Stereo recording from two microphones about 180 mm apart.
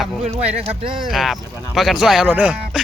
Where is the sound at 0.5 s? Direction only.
30° right (ahead or behind).